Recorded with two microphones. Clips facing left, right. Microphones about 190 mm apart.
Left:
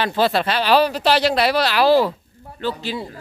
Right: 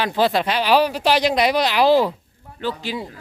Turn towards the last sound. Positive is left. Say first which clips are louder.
# left 1 dB
turn(degrees=-15)  # may be behind; listen again after turning